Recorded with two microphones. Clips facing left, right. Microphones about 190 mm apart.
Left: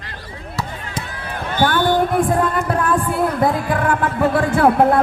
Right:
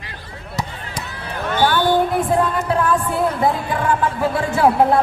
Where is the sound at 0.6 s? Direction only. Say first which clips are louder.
Even; 20° right (ahead or behind).